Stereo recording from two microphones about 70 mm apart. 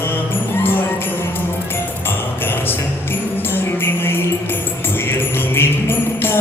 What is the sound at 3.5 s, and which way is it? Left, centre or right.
Music, left.